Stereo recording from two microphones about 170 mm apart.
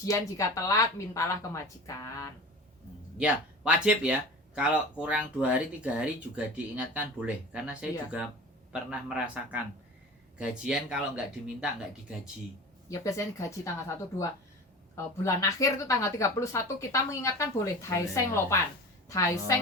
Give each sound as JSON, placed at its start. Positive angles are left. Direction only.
{"t": 0.0, "sound": "a woman's voice", "side_deg": 20}
{"t": 3.2, "sound": "speech", "side_deg": -5}
{"t": 12.9, "sound": "a woman's voice", "side_deg": 20}